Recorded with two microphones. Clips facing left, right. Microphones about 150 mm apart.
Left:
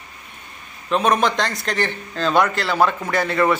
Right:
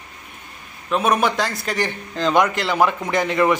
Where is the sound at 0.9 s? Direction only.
5° right (ahead or behind).